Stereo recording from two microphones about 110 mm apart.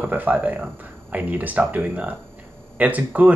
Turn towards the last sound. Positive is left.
turn(degrees=-15)  # may be behind; listen again after turning